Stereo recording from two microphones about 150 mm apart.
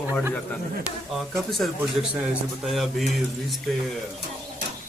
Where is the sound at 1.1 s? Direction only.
Centre (ahead or behind).